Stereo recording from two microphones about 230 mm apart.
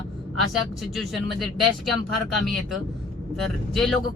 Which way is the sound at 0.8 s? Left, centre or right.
Centre.